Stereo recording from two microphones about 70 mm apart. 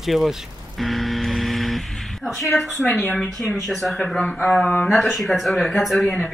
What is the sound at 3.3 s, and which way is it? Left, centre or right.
Speech, centre.